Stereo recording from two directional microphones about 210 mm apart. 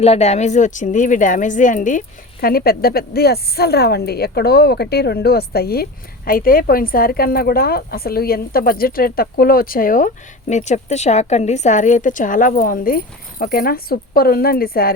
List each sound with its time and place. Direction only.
0.0 s a woman's voice: 30° left (ahead or behind)